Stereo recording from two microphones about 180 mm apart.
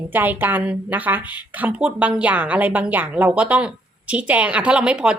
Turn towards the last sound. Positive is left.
turn(degrees=-5)  # may be behind; listen again after turning